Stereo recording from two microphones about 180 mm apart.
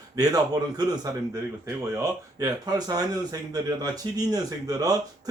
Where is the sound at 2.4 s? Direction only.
20° right (ahead or behind).